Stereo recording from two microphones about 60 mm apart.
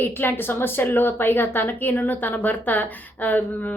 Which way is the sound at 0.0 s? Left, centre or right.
Left.